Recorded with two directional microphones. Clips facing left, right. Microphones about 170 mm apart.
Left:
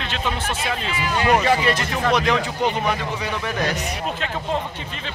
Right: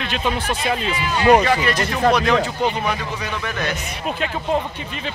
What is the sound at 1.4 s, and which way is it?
Speech, 25° left (ahead or behind).